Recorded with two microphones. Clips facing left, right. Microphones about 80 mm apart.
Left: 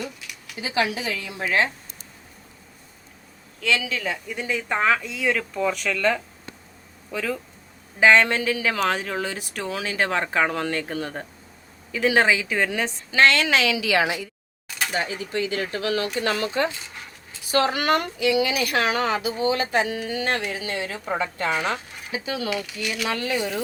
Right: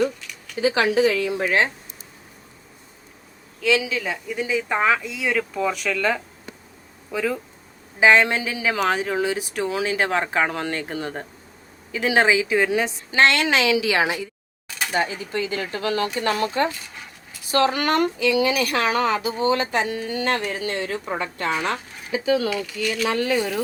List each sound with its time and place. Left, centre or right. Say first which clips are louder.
0.5 s speech: right 6 dB; right
3.6 s a woman's voice: right 3 dB; centre
13.1 s a woman's voice: even; right
17.7 s a woman's voice: right 2 dB; right
22.4 s speech: right 3 dB; centre
23.0 s speech: right 4 dB; right